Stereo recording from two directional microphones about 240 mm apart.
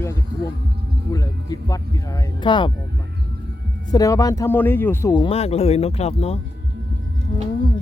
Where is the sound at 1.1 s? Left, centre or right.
Centre.